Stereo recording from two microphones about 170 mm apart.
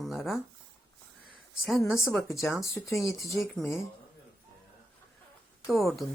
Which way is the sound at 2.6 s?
15° left (ahead or behind).